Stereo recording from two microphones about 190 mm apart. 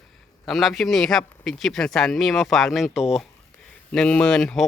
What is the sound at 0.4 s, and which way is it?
Speech, centre (ahead or behind).